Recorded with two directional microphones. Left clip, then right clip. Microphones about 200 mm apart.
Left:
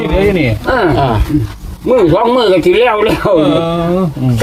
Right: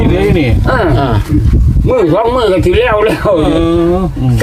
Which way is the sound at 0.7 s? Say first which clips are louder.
Left 2 dB; 5° right (ahead or behind).